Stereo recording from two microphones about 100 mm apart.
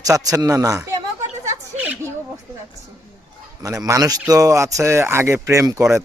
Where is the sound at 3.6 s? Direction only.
30° right (ahead or behind).